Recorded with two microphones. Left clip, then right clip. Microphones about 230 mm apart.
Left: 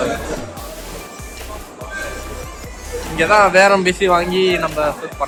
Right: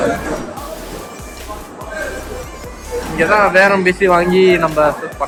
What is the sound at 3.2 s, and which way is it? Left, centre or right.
Speech, centre.